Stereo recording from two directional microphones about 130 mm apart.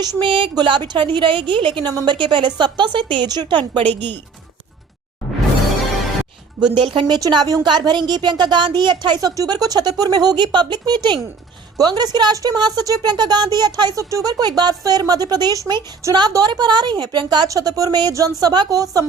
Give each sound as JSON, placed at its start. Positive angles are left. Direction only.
{"t": 0.0, "sound": "a woman's voice", "side_deg": -35}
{"t": 6.7, "sound": "a woman's voice", "side_deg": -35}